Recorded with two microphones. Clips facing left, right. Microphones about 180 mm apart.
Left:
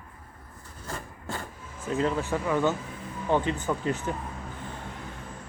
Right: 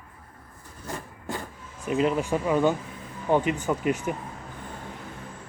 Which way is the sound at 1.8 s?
15° right (ahead or behind).